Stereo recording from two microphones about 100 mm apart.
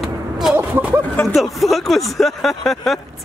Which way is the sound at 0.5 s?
15° right (ahead or behind).